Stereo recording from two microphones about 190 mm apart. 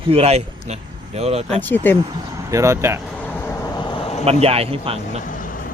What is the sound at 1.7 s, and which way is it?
Speech, 10° left (ahead or behind).